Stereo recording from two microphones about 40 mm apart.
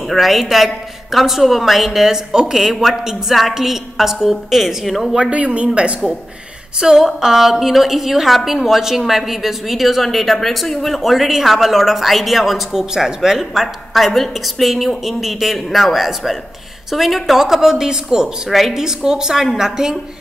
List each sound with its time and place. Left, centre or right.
0.1 s a woman's voice: centre
5.3 s speech: right
6.8 s a woman's voice: centre
13.6 s a woman's voice: centre